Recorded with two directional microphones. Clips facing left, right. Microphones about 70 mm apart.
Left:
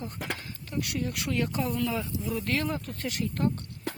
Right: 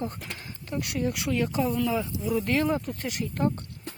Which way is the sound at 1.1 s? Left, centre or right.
Centre.